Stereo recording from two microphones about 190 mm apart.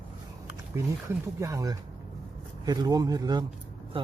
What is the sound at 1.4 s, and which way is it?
Speech, 15° right (ahead or behind).